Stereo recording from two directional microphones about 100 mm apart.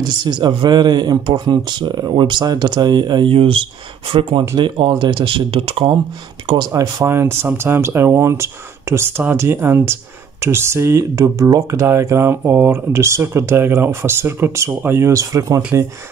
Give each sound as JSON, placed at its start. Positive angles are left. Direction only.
{"t": 0.2, "sound": "speech", "side_deg": -50}
{"t": 6.4, "sound": "speech", "side_deg": -50}
{"t": 6.7, "sound": "speech", "side_deg": -35}